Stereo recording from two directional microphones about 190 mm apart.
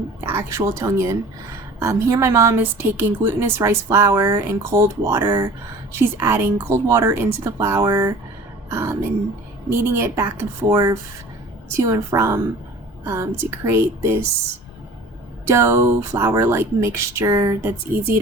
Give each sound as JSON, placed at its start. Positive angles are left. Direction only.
{"t": 0.3, "sound": "a woman's voice", "side_deg": -15}
{"t": 15.4, "sound": "a woman's voice", "side_deg": -15}